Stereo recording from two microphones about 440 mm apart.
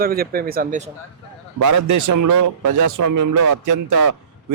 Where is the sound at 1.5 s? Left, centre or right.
Right.